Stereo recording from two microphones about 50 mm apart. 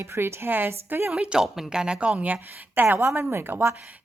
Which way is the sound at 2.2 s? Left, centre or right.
Right.